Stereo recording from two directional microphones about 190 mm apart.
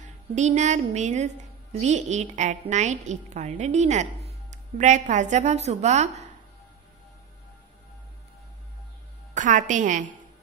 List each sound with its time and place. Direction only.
0.0 s a woman's voice: 40° right (ahead or behind)
9.3 s a woman's voice: 40° right (ahead or behind)